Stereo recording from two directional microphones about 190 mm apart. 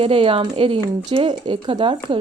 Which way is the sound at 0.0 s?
30° right (ahead or behind).